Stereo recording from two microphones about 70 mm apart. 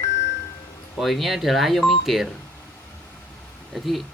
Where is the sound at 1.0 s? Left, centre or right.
Centre.